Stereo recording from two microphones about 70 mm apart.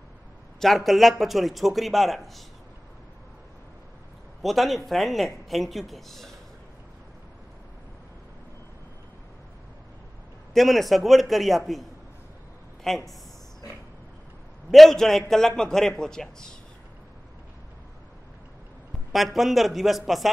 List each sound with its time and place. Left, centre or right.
0.6 s speech: centre
4.4 s speech: centre
10.5 s speech: centre
12.8 s speech: centre
14.7 s a man's voice: centre
19.1 s speech: centre